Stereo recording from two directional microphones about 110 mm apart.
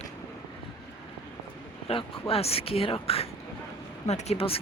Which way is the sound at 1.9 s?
55° left (ahead or behind).